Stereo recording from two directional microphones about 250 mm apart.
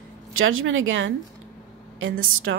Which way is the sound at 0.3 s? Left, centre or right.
Right.